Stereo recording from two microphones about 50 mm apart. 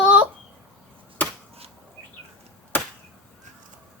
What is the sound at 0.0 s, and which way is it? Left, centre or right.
Bird, right.